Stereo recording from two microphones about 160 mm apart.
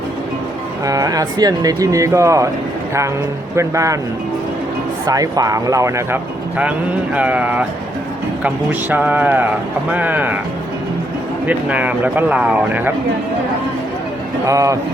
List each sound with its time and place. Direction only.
0.9 s speech: 20° right (ahead or behind)
3.5 s speech: 20° right (ahead or behind)
5.0 s speech: 25° right (ahead or behind)
6.6 s speech: 10° right (ahead or behind)
11.4 s speech: 10° right (ahead or behind)
14.4 s speech: 20° right (ahead or behind)